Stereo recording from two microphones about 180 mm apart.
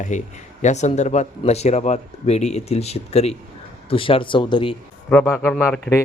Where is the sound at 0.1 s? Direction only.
40° left (ahead or behind).